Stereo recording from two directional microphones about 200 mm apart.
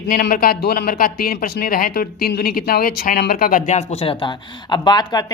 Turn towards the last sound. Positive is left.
turn(degrees=20)  # may be behind; listen again after turning